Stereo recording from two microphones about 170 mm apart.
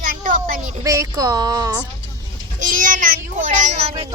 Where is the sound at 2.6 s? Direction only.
50° right (ahead or behind).